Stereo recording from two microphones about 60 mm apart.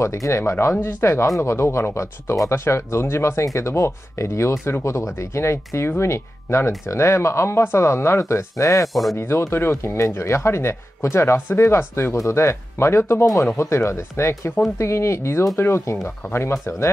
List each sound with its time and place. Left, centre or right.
0.0 s speech: left
1.4 s speech: left
8.8 s speech: centre
9.1 s speech: left